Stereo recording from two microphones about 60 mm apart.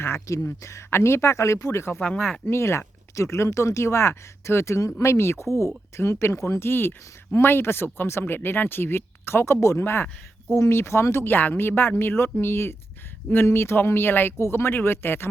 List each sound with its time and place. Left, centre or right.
0.3 s speech: left
2.0 s speech: left
2.5 s speech: left
8.2 s speech: left